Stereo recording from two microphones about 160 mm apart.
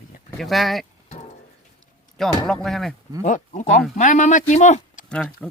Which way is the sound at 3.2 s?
50° left (ahead or behind).